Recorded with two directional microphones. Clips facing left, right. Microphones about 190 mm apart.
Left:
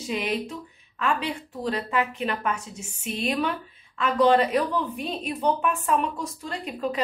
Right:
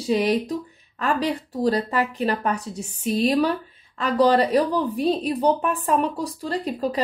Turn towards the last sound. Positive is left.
turn(degrees=-35)  # may be behind; listen again after turning